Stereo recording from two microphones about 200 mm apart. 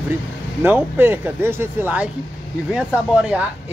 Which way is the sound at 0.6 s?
10° right (ahead or behind).